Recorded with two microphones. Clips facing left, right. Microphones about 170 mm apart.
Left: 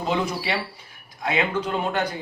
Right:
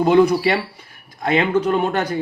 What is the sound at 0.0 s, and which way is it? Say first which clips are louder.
A man's voice: right 11 dB; 50° right (ahead or behind).